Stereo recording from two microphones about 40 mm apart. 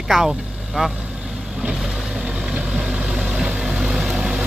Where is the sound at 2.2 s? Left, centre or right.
Right.